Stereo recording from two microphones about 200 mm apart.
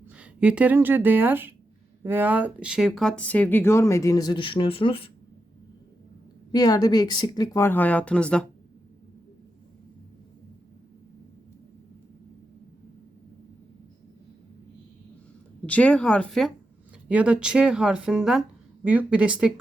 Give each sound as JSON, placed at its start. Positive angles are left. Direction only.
{"t": 0.2, "sound": "speech", "side_deg": -5}
{"t": 6.5, "sound": "speech", "side_deg": 20}
{"t": 15.6, "sound": "speech", "side_deg": 5}